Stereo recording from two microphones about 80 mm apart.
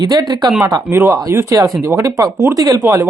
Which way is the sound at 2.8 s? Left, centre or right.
Right.